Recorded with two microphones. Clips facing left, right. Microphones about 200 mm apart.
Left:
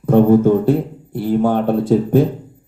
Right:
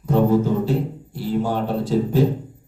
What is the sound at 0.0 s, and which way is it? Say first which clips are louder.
Speech: left 7 dB; 55° left (ahead or behind).